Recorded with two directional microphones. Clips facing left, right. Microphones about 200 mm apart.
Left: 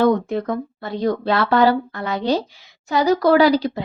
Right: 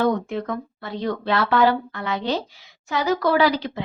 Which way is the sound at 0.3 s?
40° left (ahead or behind).